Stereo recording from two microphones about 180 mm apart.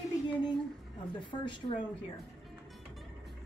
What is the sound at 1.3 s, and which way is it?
Speech, 25° left (ahead or behind).